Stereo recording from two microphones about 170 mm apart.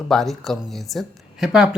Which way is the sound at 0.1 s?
Centre (ahead or behind).